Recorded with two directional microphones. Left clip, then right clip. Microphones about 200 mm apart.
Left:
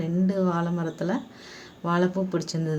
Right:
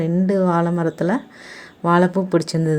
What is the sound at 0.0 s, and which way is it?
Speech, 35° right (ahead or behind).